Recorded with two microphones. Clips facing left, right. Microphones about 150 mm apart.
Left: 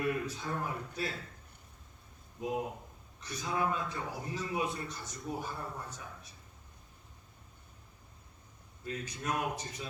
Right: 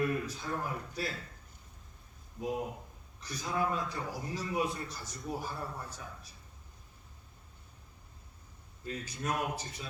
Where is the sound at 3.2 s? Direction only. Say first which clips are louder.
Even; 35° right (ahead or behind).